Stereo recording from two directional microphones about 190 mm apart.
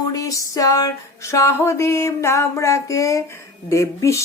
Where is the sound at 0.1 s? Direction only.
15° left (ahead or behind).